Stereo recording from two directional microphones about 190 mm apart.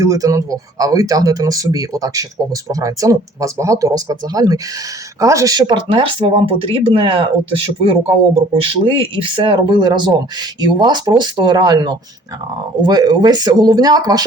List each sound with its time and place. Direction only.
0.0 s speech: 15° right (ahead or behind)